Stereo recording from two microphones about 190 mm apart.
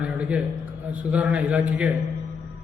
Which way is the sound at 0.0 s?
5° right (ahead or behind).